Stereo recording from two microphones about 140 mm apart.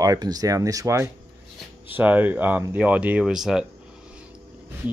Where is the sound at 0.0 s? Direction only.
25° right (ahead or behind); by 3.6 s 5° right (ahead or behind).